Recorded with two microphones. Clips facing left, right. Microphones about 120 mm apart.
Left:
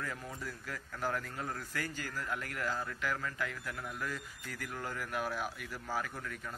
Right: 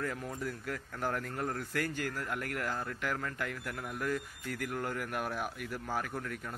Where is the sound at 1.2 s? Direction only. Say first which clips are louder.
Right 4 dB; 55° right (ahead or behind).